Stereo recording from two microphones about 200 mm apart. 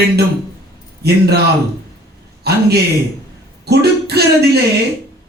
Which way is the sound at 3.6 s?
55° right (ahead or behind).